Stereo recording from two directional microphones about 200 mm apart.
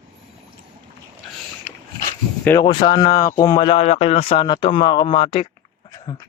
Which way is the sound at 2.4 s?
15° left (ahead or behind).